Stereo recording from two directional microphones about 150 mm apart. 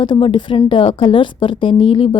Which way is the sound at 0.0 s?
35° left (ahead or behind).